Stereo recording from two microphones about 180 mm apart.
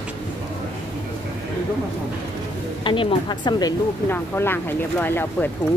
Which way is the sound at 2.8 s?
25° left (ahead or behind).